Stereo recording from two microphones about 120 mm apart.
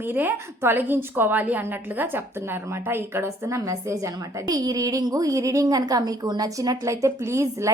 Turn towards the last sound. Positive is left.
turn(degrees=-25)  # may be behind; listen again after turning